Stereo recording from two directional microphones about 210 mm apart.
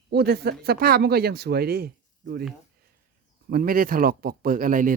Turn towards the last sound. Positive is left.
turn(degrees=-40)  # may be behind; listen again after turning